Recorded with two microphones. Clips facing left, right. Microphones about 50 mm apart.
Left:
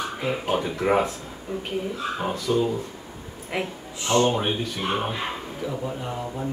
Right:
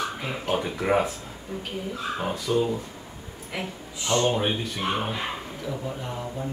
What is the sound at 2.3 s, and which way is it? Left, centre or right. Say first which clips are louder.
Speech: left 1 dB; centre.